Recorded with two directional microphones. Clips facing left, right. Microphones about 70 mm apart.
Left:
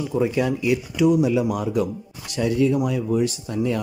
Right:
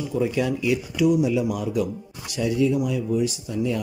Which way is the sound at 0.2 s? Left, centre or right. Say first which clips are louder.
Left 1 dB; left.